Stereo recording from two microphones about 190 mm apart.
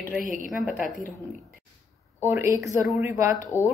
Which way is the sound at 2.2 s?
10° right (ahead or behind).